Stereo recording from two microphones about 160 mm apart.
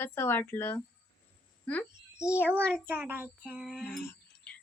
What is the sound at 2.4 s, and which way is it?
A child's voice, 10° right (ahead or behind).